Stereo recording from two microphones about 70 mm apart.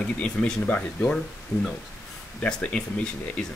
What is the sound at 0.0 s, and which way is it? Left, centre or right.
A man's voice, centre.